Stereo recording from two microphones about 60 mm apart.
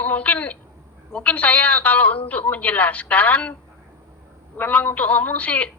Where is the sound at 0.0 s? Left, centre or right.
Left.